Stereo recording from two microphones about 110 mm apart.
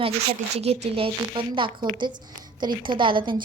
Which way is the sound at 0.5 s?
70° right (ahead or behind).